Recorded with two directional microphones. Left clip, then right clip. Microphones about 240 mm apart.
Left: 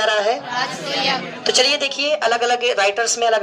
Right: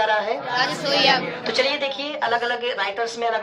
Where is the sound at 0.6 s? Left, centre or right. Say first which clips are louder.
Right 2 dB; right.